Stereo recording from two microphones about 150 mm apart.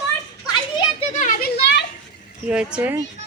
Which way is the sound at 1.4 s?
90° left.